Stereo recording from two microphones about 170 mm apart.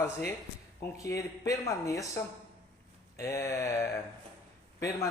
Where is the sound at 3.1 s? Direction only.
15° left (ahead or behind).